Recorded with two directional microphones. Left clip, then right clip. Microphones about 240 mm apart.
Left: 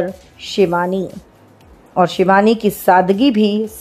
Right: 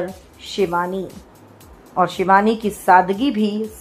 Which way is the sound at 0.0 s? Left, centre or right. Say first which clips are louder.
Left 6 dB; left.